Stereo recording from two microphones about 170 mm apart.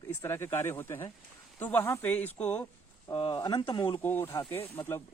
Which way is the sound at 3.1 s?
30° left (ahead or behind).